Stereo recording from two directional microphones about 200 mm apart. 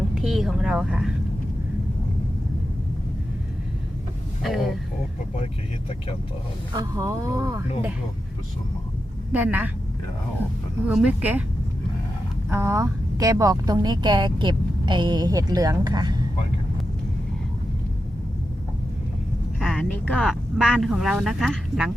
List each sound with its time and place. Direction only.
0.1 s speech: centre (ahead or behind)
4.4 s speech: centre (ahead or behind)
6.7 s speech: 15° right (ahead or behind)
9.3 s speech: 10° right (ahead or behind)
10.8 s speech: 5° right (ahead or behind)
12.5 s a woman's voice: 15° right (ahead or behind)
19.5 s speech: centre (ahead or behind)